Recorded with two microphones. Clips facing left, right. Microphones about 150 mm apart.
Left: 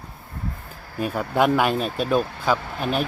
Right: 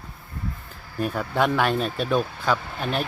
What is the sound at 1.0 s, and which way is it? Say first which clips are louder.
Speech: left 2 dB; 5° left (ahead or behind).